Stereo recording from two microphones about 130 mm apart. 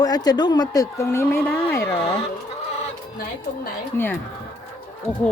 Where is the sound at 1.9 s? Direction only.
50° left (ahead or behind).